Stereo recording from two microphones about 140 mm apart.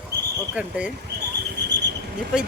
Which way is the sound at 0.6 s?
10° right (ahead or behind).